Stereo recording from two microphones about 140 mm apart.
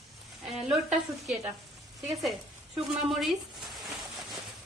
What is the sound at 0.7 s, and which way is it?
Speech, 10° right (ahead or behind).